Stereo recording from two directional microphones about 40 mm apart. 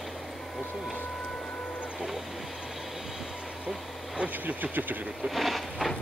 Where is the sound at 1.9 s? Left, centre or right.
Centre.